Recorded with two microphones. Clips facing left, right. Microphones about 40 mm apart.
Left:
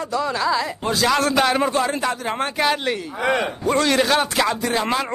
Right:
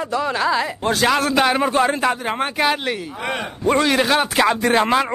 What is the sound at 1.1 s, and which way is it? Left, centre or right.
Speech, centre.